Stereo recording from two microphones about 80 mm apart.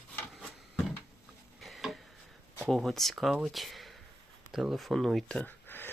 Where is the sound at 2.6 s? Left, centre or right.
Centre.